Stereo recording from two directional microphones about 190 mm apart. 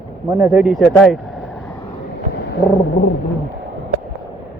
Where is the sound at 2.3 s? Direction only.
55° left (ahead or behind).